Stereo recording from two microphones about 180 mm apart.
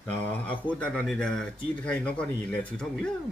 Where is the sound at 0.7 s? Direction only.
5° left (ahead or behind).